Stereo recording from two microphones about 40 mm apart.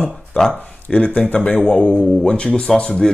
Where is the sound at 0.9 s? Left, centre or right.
Left.